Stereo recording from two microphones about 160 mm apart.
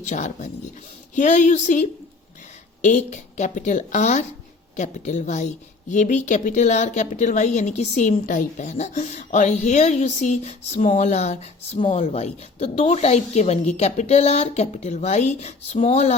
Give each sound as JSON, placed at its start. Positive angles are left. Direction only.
{"t": 0.0, "sound": "a woman's voice", "side_deg": 45}
{"t": 2.8, "sound": "a woman's voice", "side_deg": 50}